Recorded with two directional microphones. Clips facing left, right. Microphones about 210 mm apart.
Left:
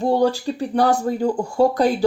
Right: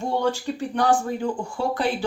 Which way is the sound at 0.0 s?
35° left (ahead or behind).